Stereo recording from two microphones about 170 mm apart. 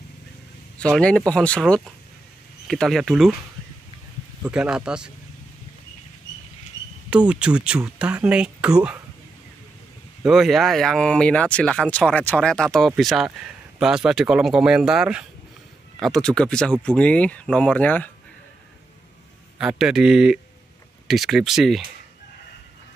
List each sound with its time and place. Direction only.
0.9 s speech: 5° left (ahead or behind)
4.5 s speech: 5° right (ahead or behind)
7.1 s speech: 5° right (ahead or behind)
10.2 s speech: centre (ahead or behind)
19.6 s speech: 5° right (ahead or behind)